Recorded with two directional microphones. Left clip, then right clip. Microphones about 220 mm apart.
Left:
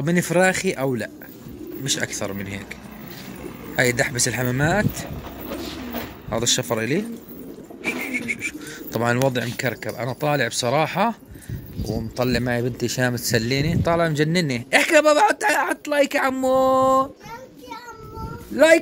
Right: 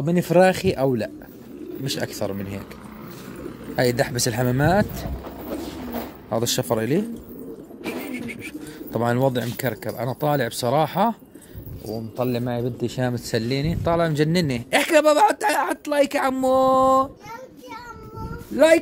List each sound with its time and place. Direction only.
0.0 s a man's voice: 10° right (ahead or behind)
3.7 s speech: 15° right (ahead or behind)
6.3 s a man's voice: 15° right (ahead or behind)
7.8 s a sound: 15° right (ahead or behind)
9.3 s a man's voice: 15° right (ahead or behind)
12.2 s a man's voice: 5° left (ahead or behind); by 17.1 s 15° right (ahead or behind)